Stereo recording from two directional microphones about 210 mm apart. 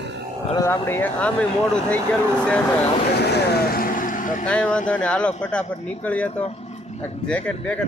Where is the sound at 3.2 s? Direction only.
50° left (ahead or behind).